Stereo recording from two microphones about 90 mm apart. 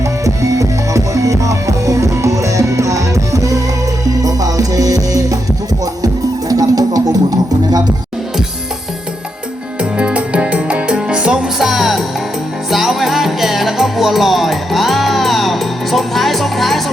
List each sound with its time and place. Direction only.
0.0 s music: 35° right (ahead or behind)
6.5 s music: 45° right (ahead or behind)
10.0 s music: 15° right (ahead or behind); by 16.8 s centre (ahead or behind)